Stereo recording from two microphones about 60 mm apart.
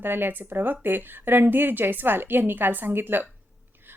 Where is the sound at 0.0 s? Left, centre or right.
Right.